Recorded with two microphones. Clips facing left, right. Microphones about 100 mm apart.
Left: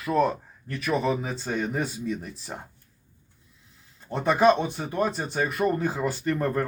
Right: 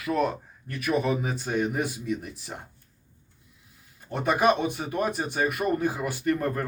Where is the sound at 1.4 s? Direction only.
15° right (ahead or behind).